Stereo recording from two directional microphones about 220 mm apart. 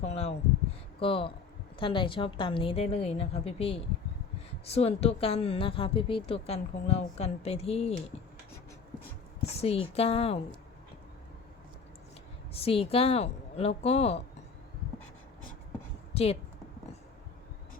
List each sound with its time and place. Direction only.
0.0 s a sound: 30° left (ahead or behind)
0.9 s a woman's voice: 25° left (ahead or behind)
9.5 s a woman's voice: 25° left (ahead or behind)
12.5 s a woman's voice: 25° left (ahead or behind)
16.1 s a woman's voice: 30° left (ahead or behind)